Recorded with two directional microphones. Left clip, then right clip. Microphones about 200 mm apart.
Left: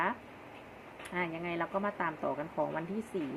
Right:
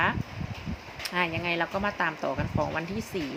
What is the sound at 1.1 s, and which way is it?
Speech, 15° right (ahead or behind).